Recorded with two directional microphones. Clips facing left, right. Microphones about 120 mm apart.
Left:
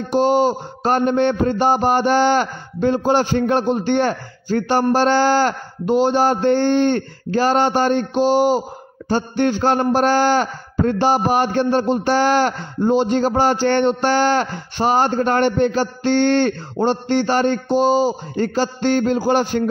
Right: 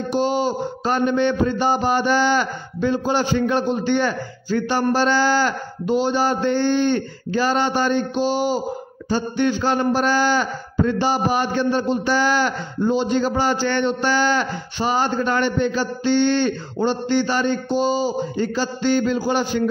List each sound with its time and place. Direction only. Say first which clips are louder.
0.1 s mantra: left 5 dB; 55° left (ahead or behind)
4.9 s speech: left 3 dB; 60° left (ahead or behind)
9.1 s mantra: left 2 dB; 55° left (ahead or behind)
9.7 s speech: left 3 dB; 55° left (ahead or behind)
13.2 s a man's voice: left 3 dB; 40° left (ahead or behind)
13.6 s speech: left 4 dB; 60° left (ahead or behind)
16.0 s speech: left 2 dB; 70° left (ahead or behind)
18.3 s speech: left 3 dB; 55° left (ahead or behind)